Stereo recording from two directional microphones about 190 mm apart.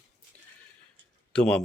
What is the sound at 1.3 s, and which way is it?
Speech, 5° left (ahead or behind).